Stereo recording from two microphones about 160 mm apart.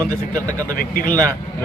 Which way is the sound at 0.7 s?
60° left (ahead or behind).